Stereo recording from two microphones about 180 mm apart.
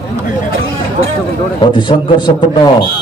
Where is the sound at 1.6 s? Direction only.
25° left (ahead or behind).